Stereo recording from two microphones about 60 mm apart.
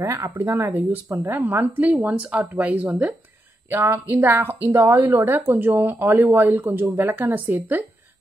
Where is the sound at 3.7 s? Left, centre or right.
Right.